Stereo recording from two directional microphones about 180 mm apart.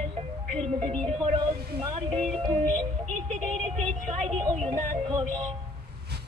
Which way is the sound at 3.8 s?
40° right (ahead or behind).